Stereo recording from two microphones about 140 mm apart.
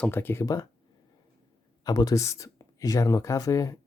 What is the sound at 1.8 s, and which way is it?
Speech, 30° left (ahead or behind).